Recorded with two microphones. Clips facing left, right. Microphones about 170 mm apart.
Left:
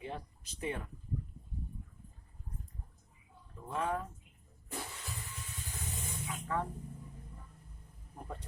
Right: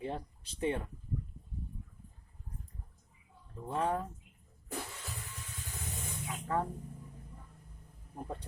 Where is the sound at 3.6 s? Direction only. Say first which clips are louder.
Right 2 dB; 30° right (ahead or behind).